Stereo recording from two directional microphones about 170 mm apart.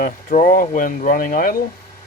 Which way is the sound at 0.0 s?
50° left (ahead or behind).